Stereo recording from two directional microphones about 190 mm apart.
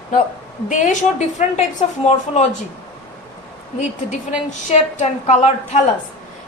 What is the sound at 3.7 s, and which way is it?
A woman's voice, 40° left (ahead or behind).